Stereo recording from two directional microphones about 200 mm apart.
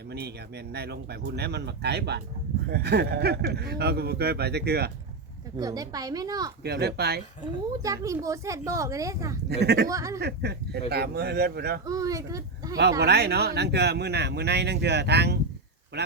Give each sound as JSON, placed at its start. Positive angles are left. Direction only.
{"t": 0.1, "sound": "speech", "side_deg": -55}
{"t": 5.5, "sound": "a woman's voice", "side_deg": -20}
{"t": 6.6, "sound": "speech", "side_deg": -55}
{"t": 7.8, "sound": "speech", "side_deg": -15}
{"t": 9.5, "sound": "speech", "side_deg": -55}
{"t": 9.9, "sound": "speech", "side_deg": -15}
{"t": 10.2, "sound": "speech", "side_deg": -55}
{"t": 11.9, "sound": "speech", "side_deg": -15}
{"t": 13.0, "sound": "speech", "side_deg": -55}